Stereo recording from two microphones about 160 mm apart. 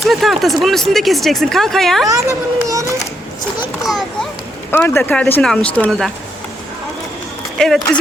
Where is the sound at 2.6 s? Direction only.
20° right (ahead or behind).